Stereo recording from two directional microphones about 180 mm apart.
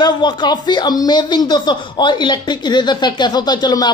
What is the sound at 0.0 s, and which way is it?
Speech, 25° left (ahead or behind).